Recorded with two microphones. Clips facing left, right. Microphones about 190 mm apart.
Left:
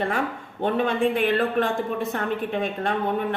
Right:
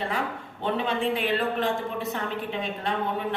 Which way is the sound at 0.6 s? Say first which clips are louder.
Left 5 dB; 50° left (ahead or behind).